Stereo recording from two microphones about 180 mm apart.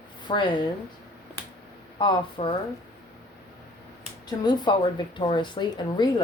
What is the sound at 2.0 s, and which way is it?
Speech, 25° left (ahead or behind).